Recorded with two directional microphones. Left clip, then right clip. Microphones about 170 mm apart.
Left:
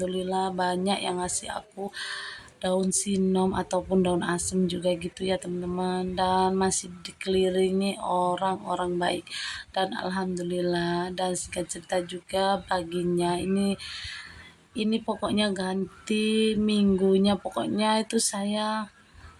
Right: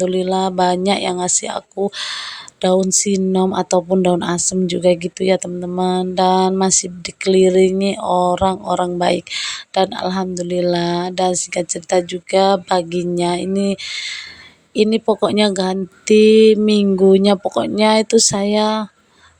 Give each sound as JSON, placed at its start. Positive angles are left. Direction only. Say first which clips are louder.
{"t": 0.0, "sound": "speech", "louder": "right 11 dB", "side_deg": -40}